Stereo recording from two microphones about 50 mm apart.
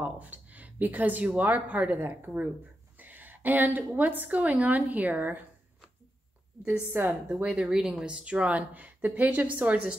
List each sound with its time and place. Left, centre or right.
0.0 s a woman's voice: right
7.1 s speech: right